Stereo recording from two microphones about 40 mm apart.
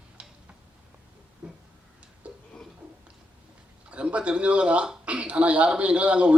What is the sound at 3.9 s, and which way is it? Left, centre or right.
A man's voice, right.